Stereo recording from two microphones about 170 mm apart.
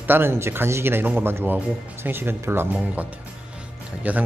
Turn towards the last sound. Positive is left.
turn(degrees=-10)  # may be behind; listen again after turning